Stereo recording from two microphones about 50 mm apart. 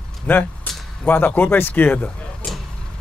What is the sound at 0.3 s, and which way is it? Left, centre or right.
Speech, left.